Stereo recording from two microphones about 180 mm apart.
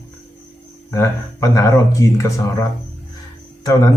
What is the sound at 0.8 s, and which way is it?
A man's voice, 15° left (ahead or behind).